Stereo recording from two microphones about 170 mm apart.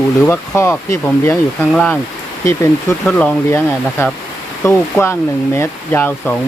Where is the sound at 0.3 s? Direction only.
15° left (ahead or behind).